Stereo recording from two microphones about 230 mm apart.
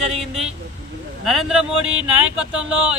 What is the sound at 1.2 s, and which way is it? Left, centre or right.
Speech, centre.